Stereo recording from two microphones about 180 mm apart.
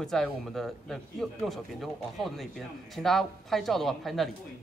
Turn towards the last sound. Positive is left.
turn(degrees=0)  # may be behind; listen again after turning